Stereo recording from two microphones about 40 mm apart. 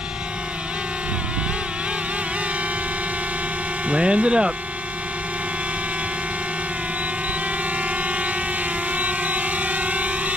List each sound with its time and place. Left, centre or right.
3.9 s speech: right
8.9 s music: right